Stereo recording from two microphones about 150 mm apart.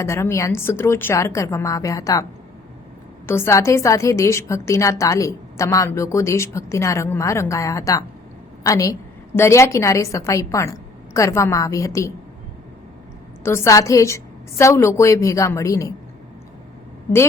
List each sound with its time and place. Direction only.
0.0 s a woman's voice: 20° left (ahead or behind)
3.2 s a woman's voice: 15° left (ahead or behind)
13.4 s a woman's voice: 15° left (ahead or behind)